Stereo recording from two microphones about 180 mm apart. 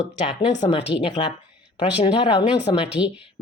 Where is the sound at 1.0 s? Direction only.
30° left (ahead or behind).